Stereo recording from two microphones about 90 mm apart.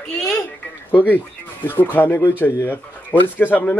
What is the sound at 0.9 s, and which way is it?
Speech, 20° left (ahead or behind).